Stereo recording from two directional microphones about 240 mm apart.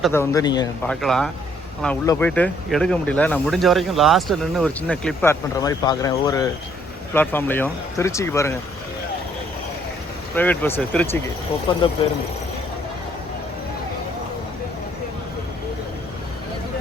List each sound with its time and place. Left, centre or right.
0.1 s speech: centre
0.9 s speech: centre
10.3 s speech: centre